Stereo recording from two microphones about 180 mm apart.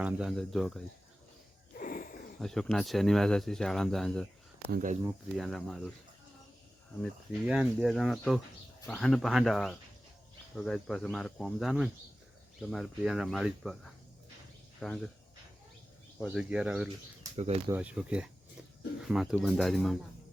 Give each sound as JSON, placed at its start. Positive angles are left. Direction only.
{"t": 0.0, "sound": "speech", "side_deg": -5}
{"t": 1.8, "sound": "a sound", "side_deg": 50}
{"t": 2.4, "sound": "speech", "side_deg": 0}
{"t": 4.7, "sound": "speech", "side_deg": -50}
{"t": 5.4, "sound": "speech", "side_deg": 0}
{"t": 7.0, "sound": "speech", "side_deg": -5}
{"t": 16.1, "sound": "speech", "side_deg": -5}